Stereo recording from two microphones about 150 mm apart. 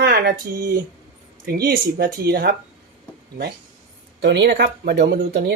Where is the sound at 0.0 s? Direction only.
85° right.